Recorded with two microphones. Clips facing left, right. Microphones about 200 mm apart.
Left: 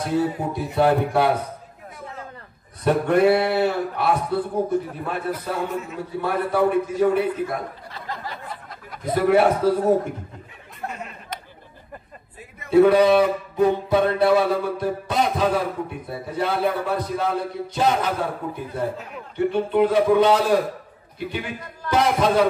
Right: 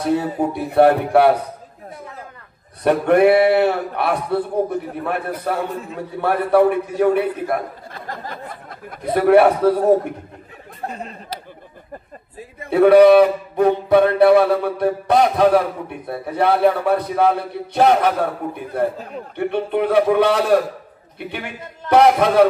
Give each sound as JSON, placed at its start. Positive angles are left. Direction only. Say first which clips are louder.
{"t": 0.1, "sound": "speech", "louder": "right 3 dB", "side_deg": -60}
{"t": 2.8, "sound": "a man's voice", "louder": "right 4 dB", "side_deg": -60}
{"t": 10.8, "sound": "speech", "louder": "right 3 dB", "side_deg": -35}
{"t": 12.6, "sound": "speech", "louder": "right 5 dB", "side_deg": -60}
{"t": 18.9, "sound": "a man's voice", "louder": "right 5 dB", "side_deg": -35}
{"t": 19.3, "sound": "speech", "louder": "left 1 dB", "side_deg": -60}